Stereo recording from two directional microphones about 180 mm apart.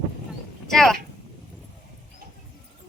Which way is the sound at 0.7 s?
Centre (ahead or behind).